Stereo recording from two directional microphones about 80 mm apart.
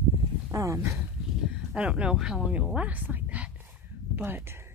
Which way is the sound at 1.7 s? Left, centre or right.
Centre.